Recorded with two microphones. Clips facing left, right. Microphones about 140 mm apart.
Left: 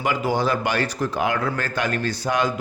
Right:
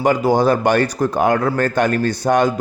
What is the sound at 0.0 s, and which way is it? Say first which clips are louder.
Speech: right 7 dB; 40° right (ahead or behind).